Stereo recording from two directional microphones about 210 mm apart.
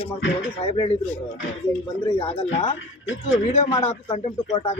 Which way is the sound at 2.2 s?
30° left (ahead or behind).